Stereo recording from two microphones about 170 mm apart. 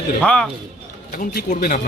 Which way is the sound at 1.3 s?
55° left (ahead or behind).